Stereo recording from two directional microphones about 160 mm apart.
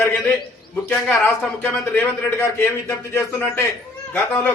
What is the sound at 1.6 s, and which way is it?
Speech, 10° left (ahead or behind).